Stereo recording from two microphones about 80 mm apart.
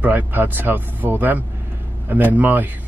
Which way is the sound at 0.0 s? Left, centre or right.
Right.